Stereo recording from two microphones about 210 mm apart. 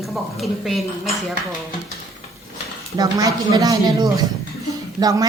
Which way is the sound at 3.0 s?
15° right (ahead or behind).